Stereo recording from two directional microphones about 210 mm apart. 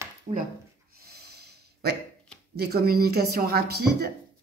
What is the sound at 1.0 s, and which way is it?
Snort, 50° right (ahead or behind).